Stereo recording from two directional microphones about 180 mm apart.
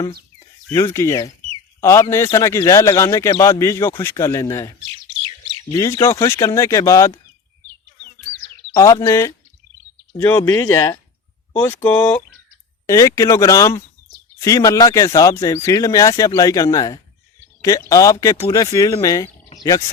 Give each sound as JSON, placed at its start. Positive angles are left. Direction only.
{"t": 0.3, "sound": "speech", "side_deg": 15}
{"t": 8.7, "sound": "speech", "side_deg": 15}